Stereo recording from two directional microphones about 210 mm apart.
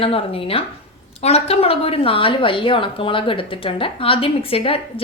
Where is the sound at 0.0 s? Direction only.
25° left (ahead or behind).